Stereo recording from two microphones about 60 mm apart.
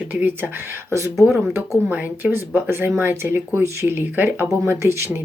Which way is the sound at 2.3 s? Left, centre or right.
Right.